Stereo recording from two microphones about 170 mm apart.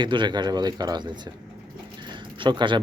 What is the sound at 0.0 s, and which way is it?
Speech, 25° right (ahead or behind).